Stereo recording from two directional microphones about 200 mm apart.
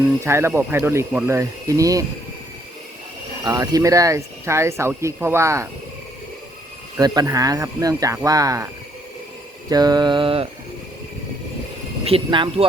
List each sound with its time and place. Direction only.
0.3 s speech: 10° right (ahead or behind)
3.4 s speech: 20° right (ahead or behind)
6.9 s speech: 20° right (ahead or behind)
9.6 s mantra: 20° right (ahead or behind)
12.0 s mantra: 25° right (ahead or behind)